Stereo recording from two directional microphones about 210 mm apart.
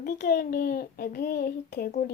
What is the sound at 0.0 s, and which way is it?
A child's voice, 45° left (ahead or behind).